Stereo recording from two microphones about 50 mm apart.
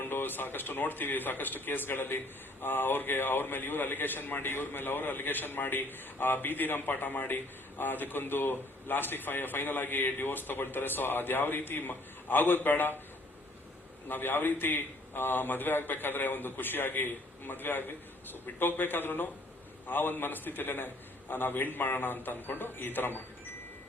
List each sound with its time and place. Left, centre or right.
0.0 s speech: left
14.1 s speech: left